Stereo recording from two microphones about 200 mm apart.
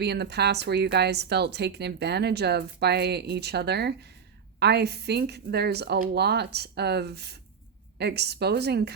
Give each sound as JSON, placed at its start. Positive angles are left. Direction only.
{"t": 0.0, "sound": "a woman's voice", "side_deg": -55}